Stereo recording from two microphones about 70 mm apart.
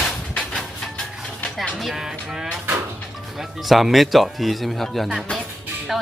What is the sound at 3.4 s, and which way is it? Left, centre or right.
Speech, centre.